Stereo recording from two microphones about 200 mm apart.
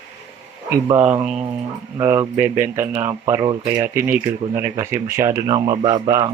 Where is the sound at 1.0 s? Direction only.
5° right (ahead or behind).